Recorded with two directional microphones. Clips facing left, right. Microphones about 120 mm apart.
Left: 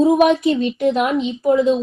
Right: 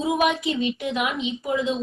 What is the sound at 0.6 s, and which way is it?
A woman's voice, 45° left (ahead or behind).